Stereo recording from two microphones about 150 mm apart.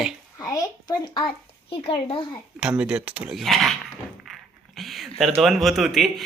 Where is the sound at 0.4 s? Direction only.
25° left (ahead or behind).